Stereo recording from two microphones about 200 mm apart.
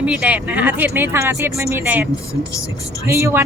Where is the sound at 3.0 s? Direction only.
15° right (ahead or behind).